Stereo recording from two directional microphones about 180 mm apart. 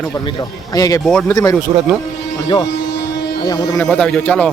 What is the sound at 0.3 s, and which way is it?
Speech, 20° left (ahead or behind).